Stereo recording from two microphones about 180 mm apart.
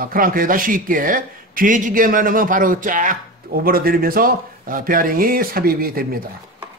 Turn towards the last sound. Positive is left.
turn(degrees=-55)  # may be behind; listen again after turning